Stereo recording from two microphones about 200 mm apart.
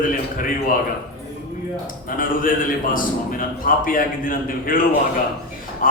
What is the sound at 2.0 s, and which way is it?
A man's voice, 45° left (ahead or behind).